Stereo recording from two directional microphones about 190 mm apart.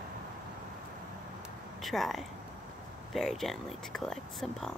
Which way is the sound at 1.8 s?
Centre (ahead or behind).